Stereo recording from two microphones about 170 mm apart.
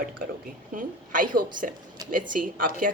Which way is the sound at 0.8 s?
50° right (ahead or behind).